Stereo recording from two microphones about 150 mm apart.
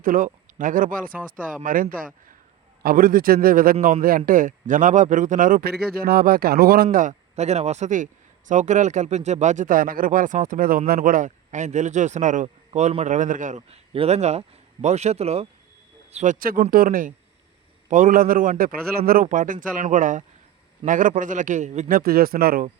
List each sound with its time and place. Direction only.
0.0 s speech: 70° right (ahead or behind); by 6.8 s 90° right
6.9 s speech: 55° right (ahead or behind)
13.6 s speech: 40° right (ahead or behind)
16.1 s speech: 60° right (ahead or behind)
21.8 s speech: 75° right (ahead or behind)